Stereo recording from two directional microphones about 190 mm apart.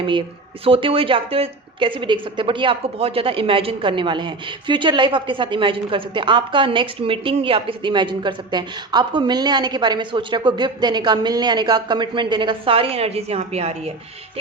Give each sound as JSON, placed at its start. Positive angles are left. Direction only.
{"t": 0.0, "sound": "speech", "side_deg": -25}